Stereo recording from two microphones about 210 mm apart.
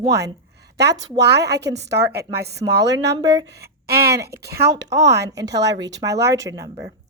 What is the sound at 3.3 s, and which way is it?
Speech, 55° right (ahead or behind).